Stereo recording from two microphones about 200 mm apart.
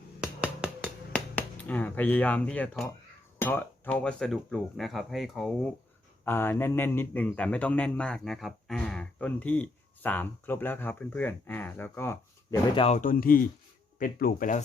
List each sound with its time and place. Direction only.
0.2 s finger snapping: 5° right (ahead or behind)
1.1 s speech: 10° left (ahead or behind)
6.2 s a man's voice: 10° left (ahead or behind)
12.7 s speech: 30° left (ahead or behind)